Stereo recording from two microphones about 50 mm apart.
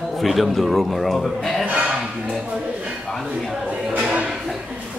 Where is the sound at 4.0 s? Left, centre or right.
Right.